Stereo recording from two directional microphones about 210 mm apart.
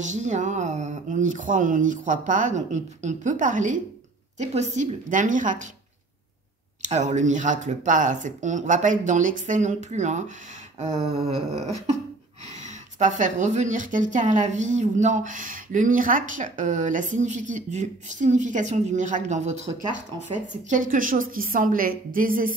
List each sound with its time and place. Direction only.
0.0 s a woman's voice: 35° right (ahead or behind)
6.9 s a woman's voice: 35° right (ahead or behind)
12.5 s a woman's voice: 35° right (ahead or behind)